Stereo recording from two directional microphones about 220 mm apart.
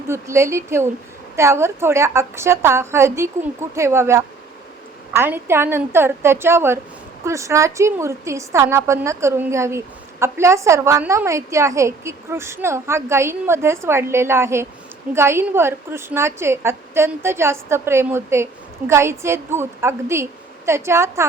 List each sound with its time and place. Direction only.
0.1 s a woman's voice: 10° right (ahead or behind)